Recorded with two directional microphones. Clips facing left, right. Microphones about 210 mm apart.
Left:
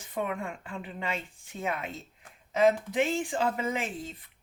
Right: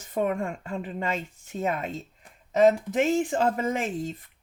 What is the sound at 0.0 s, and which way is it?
Speech, 45° right (ahead or behind).